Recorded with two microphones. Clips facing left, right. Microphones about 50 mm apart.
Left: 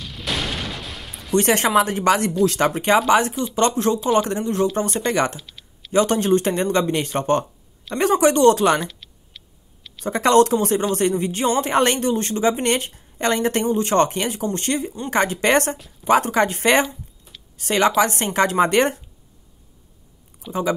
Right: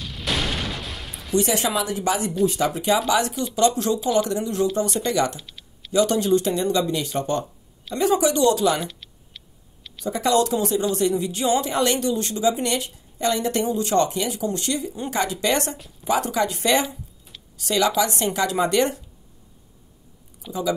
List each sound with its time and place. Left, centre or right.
0.0 s fusillade: centre
1.3 s speech: left
3.1 s speech: left
5.4 s a sound: centre
5.9 s speech: left
8.8 s a sound: centre
10.0 s speech: left
20.4 s speech: centre